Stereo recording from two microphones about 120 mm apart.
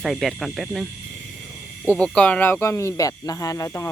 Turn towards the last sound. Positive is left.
turn(degrees=25)  # may be behind; listen again after turning